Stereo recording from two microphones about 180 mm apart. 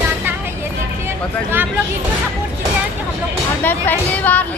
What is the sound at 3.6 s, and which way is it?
Speech, 10° left (ahead or behind).